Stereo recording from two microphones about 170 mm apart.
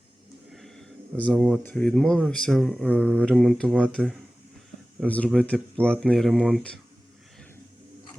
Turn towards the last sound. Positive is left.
turn(degrees=0)  # may be behind; listen again after turning